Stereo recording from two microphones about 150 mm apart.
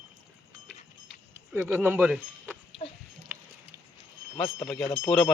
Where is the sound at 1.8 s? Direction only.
10° right (ahead or behind).